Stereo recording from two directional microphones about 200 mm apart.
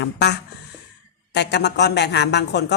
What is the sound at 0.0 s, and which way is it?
A woman's voice, 55° left (ahead or behind).